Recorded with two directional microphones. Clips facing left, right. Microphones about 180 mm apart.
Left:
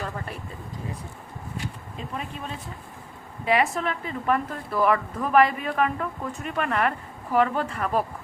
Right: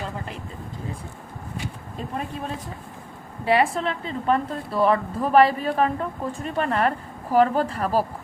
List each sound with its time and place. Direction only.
3.4 s a woman's voice: 30° right (ahead or behind)